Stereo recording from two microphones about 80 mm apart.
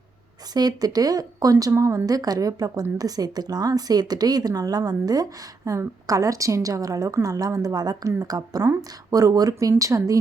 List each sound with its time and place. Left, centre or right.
0.5 s a woman's voice: right